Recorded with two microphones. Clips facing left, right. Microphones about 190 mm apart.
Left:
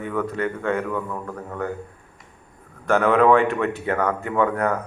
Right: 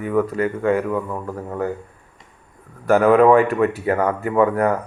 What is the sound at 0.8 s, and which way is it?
Speech, 20° right (ahead or behind).